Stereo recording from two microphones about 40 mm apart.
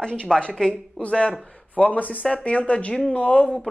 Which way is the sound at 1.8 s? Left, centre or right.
Left.